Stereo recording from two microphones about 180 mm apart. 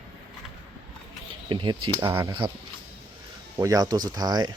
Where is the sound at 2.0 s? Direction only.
10° right (ahead or behind).